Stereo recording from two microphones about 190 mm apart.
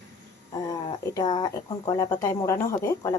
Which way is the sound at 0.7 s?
20° left (ahead or behind).